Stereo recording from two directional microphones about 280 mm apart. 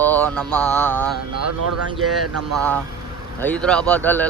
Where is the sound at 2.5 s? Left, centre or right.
Centre.